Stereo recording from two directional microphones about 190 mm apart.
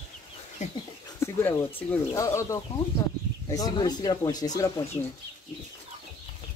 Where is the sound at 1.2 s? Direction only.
15° left (ahead or behind).